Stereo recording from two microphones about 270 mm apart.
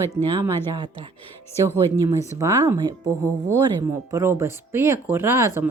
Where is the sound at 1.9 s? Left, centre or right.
Centre.